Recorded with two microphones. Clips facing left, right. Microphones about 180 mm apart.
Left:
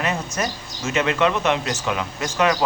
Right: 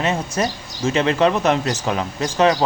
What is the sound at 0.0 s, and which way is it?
Speech, 30° right (ahead or behind).